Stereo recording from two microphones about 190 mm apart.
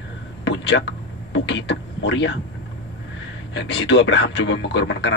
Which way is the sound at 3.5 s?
70° left (ahead or behind).